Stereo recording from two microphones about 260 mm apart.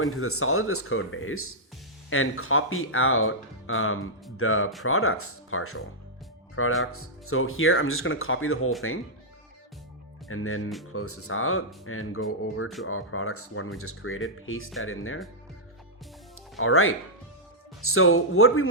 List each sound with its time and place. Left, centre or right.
0.0 s speech: left
10.2 s speech: left
16.6 s speech: left